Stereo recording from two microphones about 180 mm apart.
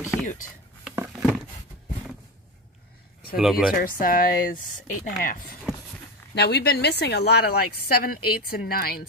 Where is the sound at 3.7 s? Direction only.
50° left (ahead or behind).